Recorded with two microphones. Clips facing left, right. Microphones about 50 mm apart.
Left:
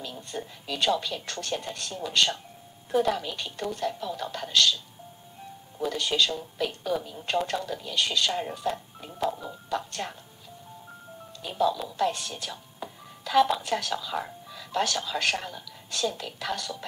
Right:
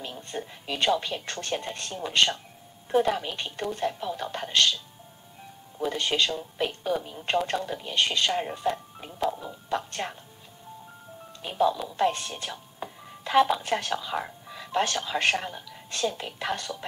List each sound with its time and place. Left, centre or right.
0.0 s a woman's voice: right
5.9 s a woman's voice: right
9.2 s speech: centre
9.7 s a woman's voice: right
11.4 s a woman's voice: right
12.0 s a sound: right
13.6 s a woman's voice: right